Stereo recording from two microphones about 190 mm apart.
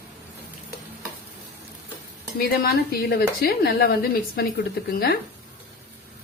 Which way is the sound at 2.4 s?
55° left (ahead or behind).